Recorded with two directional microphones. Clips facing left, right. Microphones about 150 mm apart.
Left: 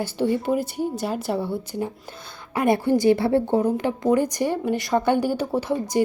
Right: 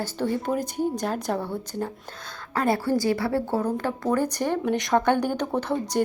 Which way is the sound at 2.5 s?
15° left (ahead or behind).